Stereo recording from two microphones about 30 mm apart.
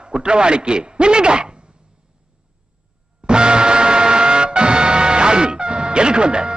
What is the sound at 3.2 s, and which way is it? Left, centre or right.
Music, right.